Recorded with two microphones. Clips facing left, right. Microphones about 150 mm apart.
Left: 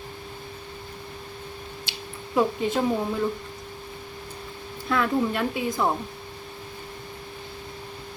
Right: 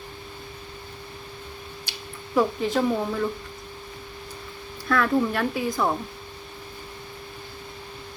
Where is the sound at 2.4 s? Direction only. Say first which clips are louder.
Right 1 dB; 20° left (ahead or behind).